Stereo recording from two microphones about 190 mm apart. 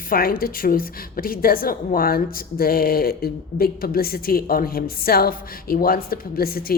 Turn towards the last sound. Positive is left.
turn(degrees=50)  # may be behind; listen again after turning